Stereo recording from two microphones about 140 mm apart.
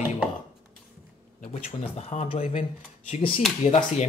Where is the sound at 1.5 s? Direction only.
50° left (ahead or behind).